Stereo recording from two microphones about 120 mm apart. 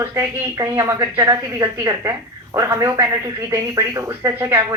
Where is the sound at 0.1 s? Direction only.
30° right (ahead or behind).